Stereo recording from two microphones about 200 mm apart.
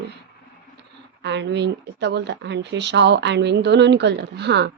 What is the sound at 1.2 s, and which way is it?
Speech, 60° right (ahead or behind).